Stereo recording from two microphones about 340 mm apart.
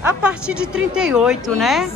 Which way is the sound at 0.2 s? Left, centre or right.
Centre.